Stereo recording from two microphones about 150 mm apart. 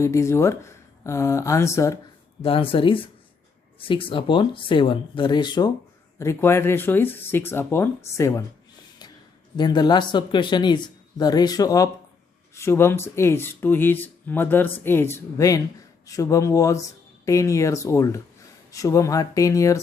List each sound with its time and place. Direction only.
0.0 s speech: 20° left (ahead or behind)
2.4 s speech: 40° left (ahead or behind)
6.1 s speech: 20° left (ahead or behind)
9.6 s speech: 30° left (ahead or behind)